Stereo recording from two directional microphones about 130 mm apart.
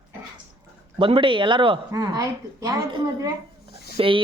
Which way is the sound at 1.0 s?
40° right (ahead or behind).